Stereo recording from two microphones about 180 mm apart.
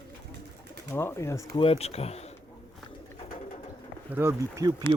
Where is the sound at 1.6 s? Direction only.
35° left (ahead or behind).